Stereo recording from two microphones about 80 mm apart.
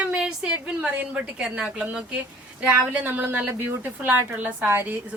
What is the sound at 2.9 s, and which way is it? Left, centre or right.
A woman's voice, right.